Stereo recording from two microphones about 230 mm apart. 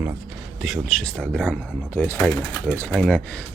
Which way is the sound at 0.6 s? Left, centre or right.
Centre.